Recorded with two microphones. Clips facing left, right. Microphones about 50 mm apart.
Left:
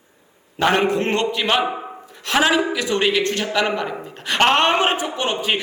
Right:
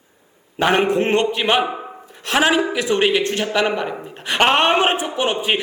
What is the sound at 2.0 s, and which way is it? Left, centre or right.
A man's voice, right.